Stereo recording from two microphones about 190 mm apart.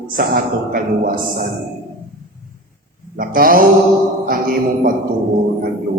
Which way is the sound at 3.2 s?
50° right (ahead or behind).